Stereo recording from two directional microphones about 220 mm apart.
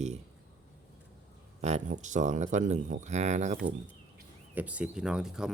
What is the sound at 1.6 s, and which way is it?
Speech, 30° right (ahead or behind).